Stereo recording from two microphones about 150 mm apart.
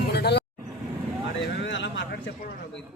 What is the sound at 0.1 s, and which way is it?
Vehicle, 90° left.